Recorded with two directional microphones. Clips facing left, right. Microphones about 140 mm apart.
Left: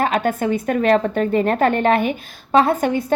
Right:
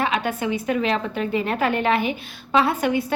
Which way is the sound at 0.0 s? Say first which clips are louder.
Left 4 dB; 45° left (ahead or behind).